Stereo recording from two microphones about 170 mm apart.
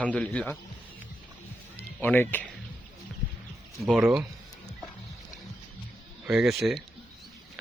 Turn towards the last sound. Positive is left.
turn(degrees=0)  # may be behind; listen again after turning